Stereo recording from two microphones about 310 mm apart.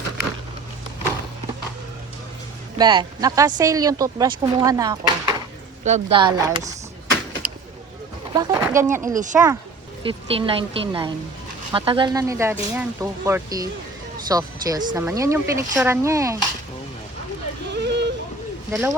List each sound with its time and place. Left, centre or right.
2.7 s speech: centre
8.3 s speech: centre
10.0 s speech: centre
17.7 s a sound: right
18.7 s speech: centre